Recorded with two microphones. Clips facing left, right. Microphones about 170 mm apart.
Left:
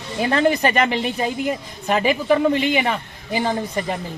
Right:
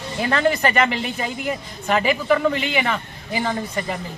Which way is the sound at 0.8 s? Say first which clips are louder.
Left 2 dB; 35° left (ahead or behind).